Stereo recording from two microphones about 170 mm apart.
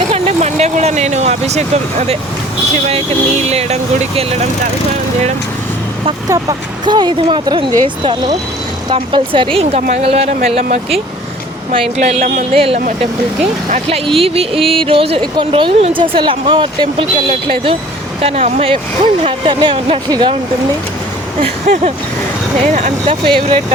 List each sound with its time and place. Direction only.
0.1 s vehicle: 40° right (ahead or behind)
2.8 s speech: 40° right (ahead or behind)
6.8 s speech: 25° right (ahead or behind)
19.2 s speech: 25° right (ahead or behind)
21.4 s speech: 40° right (ahead or behind)
23.0 s speech: 30° right (ahead or behind)